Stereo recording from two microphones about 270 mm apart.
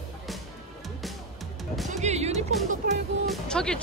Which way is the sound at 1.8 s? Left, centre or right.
Right.